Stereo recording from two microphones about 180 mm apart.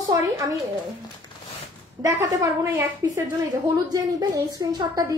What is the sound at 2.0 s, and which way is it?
A woman's voice, 20° right (ahead or behind).